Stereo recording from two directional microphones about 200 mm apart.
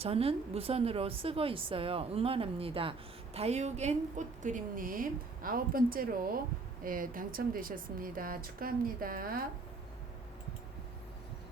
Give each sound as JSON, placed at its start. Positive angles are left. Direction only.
{"t": 0.0, "sound": "a woman's voice", "side_deg": -30}